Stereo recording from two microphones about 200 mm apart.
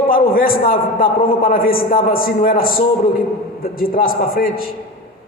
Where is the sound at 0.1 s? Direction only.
45° left (ahead or behind).